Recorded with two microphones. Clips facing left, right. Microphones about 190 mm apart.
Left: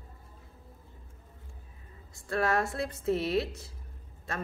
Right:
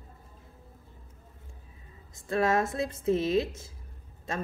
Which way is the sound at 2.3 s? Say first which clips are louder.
Right 3 dB; 20° right (ahead or behind).